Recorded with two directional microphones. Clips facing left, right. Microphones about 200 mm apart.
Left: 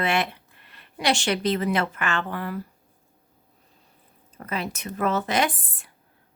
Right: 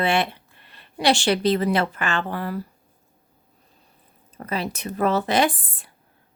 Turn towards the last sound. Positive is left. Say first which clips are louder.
# right 4 dB
turn(degrees=-35)  # may be behind; listen again after turning